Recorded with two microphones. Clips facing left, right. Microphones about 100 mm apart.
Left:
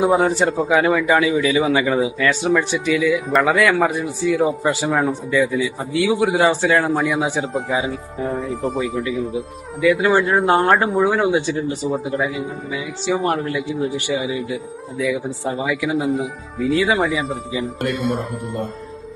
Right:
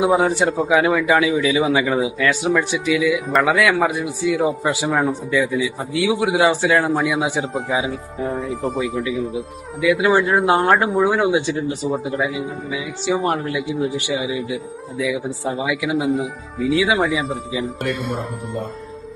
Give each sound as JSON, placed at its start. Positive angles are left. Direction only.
{"t": 0.0, "sound": "speech", "side_deg": 0}
{"t": 11.3, "sound": "speech", "side_deg": -15}
{"t": 11.9, "sound": "speech", "side_deg": 0}